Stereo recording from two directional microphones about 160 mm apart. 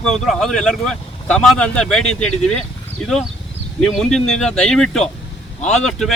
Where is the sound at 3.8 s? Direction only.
Centre (ahead or behind).